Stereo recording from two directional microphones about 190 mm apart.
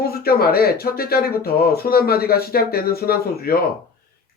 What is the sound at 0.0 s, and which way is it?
Speech, 55° left (ahead or behind).